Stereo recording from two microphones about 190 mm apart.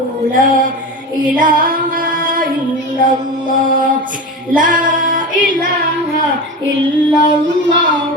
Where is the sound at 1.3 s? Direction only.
45° right (ahead or behind).